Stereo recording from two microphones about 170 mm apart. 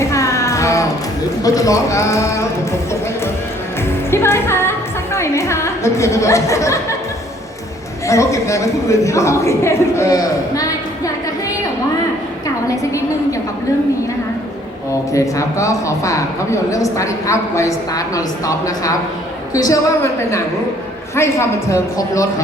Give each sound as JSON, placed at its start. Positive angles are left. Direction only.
{"t": 0.0, "sound": "music", "side_deg": 15}
{"t": 1.4, "sound": "speech", "side_deg": 20}
{"t": 4.1, "sound": "music", "side_deg": 15}
{"t": 5.1, "sound": "speech", "side_deg": 15}
{"t": 8.0, "sound": "speech", "side_deg": 20}
{"t": 15.1, "sound": "speech", "side_deg": 20}